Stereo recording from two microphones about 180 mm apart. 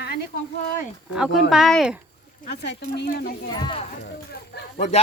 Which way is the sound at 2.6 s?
70° left (ahead or behind).